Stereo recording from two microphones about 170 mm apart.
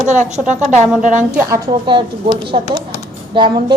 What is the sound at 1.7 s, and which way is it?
Speech, 30° right (ahead or behind).